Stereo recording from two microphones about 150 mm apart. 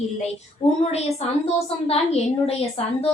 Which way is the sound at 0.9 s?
45° left (ahead or behind).